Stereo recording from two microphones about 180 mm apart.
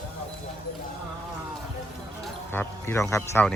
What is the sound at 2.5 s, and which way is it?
Speech, 10° left (ahead or behind).